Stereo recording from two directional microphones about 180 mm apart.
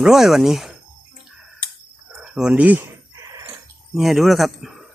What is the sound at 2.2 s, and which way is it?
Chicken, 5° right (ahead or behind).